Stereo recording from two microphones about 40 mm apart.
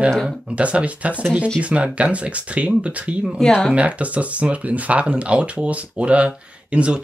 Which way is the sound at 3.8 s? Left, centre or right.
Right.